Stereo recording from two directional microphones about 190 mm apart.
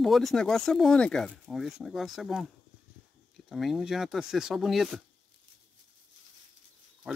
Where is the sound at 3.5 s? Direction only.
Centre (ahead or behind).